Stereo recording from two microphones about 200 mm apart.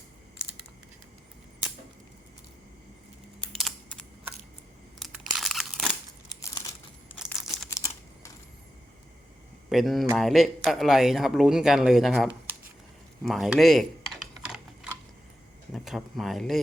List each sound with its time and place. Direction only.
3.6 s computer keyboard: 5° left (ahead or behind)
4.9 s crumpling: centre (ahead or behind)
6.4 s crumpling: 20° left (ahead or behind)
7.7 s computer keyboard: 15° left (ahead or behind)
9.6 s speech: centre (ahead or behind)
13.2 s a sound: centre (ahead or behind)
15.7 s speech: centre (ahead or behind)